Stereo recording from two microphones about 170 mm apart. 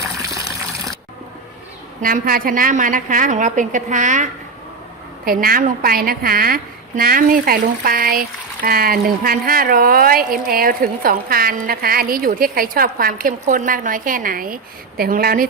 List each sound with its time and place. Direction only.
2.0 s a woman's voice: 55° right (ahead or behind)
5.2 s speech: 60° right (ahead or behind)